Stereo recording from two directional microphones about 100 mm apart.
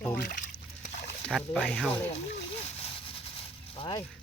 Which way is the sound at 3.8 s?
50° left (ahead or behind).